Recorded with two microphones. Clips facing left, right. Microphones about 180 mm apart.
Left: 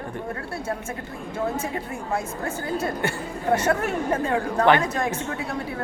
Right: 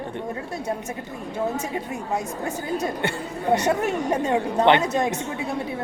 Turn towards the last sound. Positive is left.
turn(degrees=-20)  # may be behind; listen again after turning